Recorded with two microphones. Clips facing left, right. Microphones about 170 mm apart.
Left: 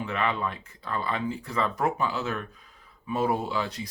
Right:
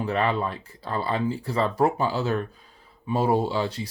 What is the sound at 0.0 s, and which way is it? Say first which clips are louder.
Speech: right 4 dB; 35° right (ahead or behind).